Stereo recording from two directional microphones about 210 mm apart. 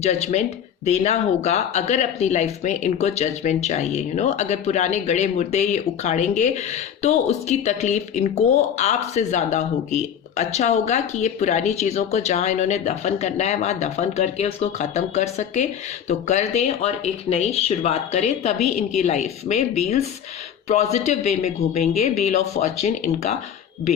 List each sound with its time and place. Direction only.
0.0 s speech: 30° left (ahead or behind)